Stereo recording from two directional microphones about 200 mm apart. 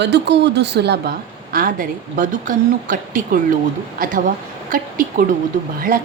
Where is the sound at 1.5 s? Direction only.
45° right (ahead or behind).